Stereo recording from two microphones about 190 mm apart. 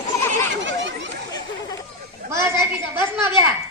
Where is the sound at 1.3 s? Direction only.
20° left (ahead or behind).